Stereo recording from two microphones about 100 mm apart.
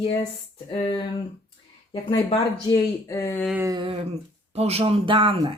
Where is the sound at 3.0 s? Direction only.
30° left (ahead or behind).